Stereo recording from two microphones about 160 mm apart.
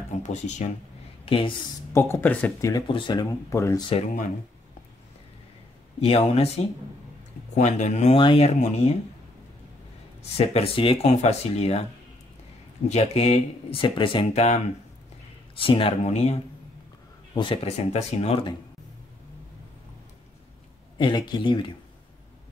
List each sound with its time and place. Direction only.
0.2 s speech: 45° left (ahead or behind)
1.2 s speech: 35° left (ahead or behind)
2.0 s speech: 15° left (ahead or behind)
2.7 s speech: 30° left (ahead or behind)
5.9 s speech: 40° left (ahead or behind)
10.3 s speech: 40° left (ahead or behind)
12.8 s speech: 40° left (ahead or behind)
15.6 s speech: 35° left (ahead or behind)
17.3 s speech: 30° left (ahead or behind)
21.0 s speech: 30° left (ahead or behind)